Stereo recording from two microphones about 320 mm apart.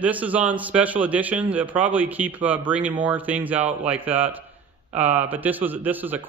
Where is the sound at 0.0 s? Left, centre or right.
Centre.